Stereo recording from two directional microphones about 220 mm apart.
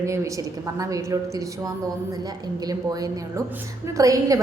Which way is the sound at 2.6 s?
15° right (ahead or behind).